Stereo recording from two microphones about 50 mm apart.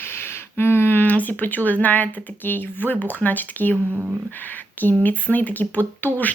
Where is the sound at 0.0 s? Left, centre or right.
Left.